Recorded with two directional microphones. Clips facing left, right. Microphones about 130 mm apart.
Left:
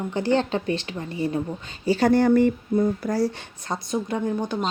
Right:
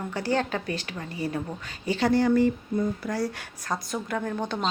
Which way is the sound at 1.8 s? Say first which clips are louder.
Left 5 dB; 35° left (ahead or behind).